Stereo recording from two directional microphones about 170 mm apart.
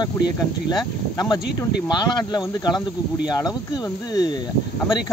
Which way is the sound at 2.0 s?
25° left (ahead or behind).